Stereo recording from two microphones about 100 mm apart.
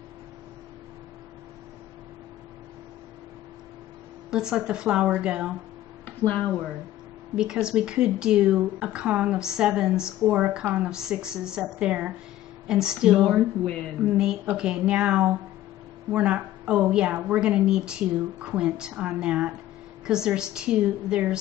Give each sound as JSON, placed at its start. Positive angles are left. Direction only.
{"t": 4.3, "sound": "speech", "side_deg": -5}
{"t": 7.3, "sound": "speech", "side_deg": -5}